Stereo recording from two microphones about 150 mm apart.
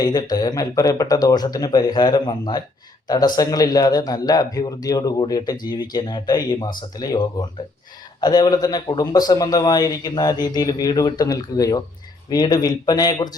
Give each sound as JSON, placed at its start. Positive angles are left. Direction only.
{"t": 0.0, "sound": "a man's voice", "side_deg": 25}